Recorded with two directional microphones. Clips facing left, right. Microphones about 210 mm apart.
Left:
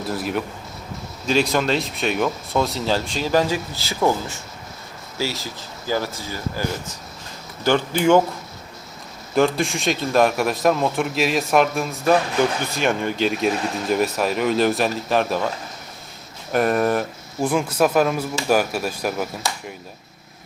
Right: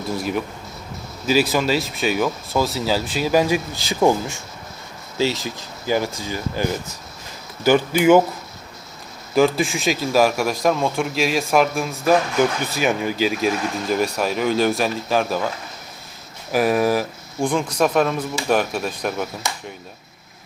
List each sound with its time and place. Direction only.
0.1 s a man's voice: centre (ahead or behind)
9.3 s a man's voice: centre (ahead or behind)
16.5 s a man's voice: centre (ahead or behind)